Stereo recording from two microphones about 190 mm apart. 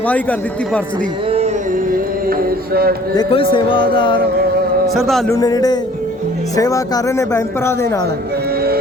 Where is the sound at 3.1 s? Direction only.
25° left (ahead or behind).